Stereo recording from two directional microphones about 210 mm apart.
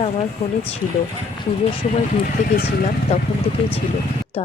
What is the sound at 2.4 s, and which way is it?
Speech, 45° left (ahead or behind).